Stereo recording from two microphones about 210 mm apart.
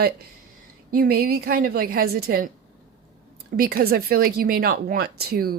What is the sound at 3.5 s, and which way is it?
A woman's voice, 45° right (ahead or behind).